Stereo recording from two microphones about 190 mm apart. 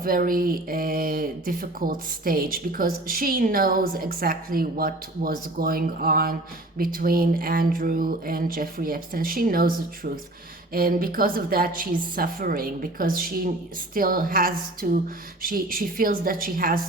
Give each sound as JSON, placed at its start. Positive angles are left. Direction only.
{"t": 0.0, "sound": "speech", "side_deg": -50}